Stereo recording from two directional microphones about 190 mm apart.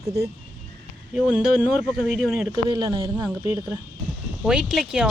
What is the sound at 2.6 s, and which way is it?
Speech, 25° right (ahead or behind).